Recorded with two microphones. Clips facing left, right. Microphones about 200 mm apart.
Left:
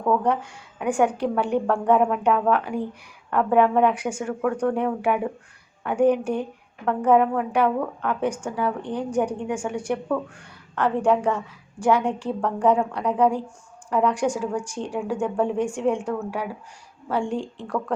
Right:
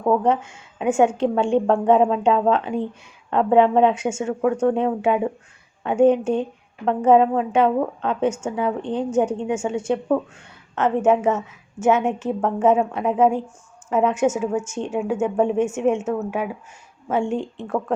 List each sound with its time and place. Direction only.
0.0 s a woman's voice: 25° right (ahead or behind)